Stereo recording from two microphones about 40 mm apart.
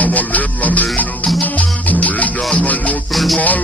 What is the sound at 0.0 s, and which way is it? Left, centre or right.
Music, left.